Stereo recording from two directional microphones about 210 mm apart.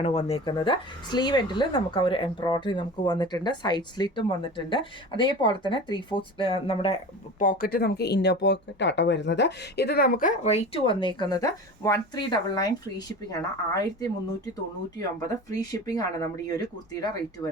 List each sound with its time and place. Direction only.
0.0 s speech: 30° left (ahead or behind)
15.3 s speech: 15° left (ahead or behind)